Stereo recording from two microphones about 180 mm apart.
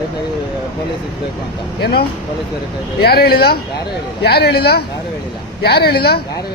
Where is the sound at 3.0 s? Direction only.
60° left (ahead or behind).